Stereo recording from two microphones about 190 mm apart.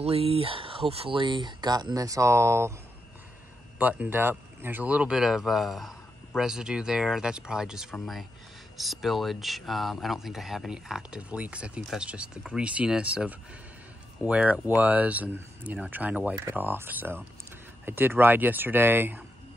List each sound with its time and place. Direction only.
0.0 s speech: 30° right (ahead or behind); by 2.7 s 15° right (ahead or behind)
3.7 s speech: 10° right (ahead or behind)